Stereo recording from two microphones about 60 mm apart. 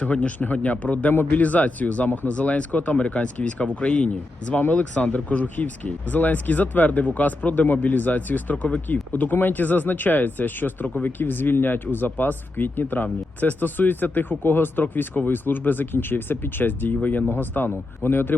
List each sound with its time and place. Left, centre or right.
0.0 s speech: left